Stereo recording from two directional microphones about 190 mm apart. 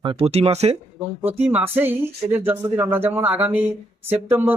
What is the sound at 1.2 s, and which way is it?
Speech, 10° right (ahead or behind).